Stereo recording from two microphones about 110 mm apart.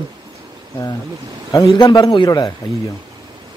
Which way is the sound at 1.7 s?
35° left (ahead or behind).